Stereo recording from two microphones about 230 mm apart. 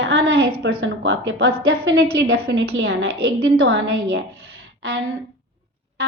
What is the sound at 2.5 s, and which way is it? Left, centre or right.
A woman's voice, right.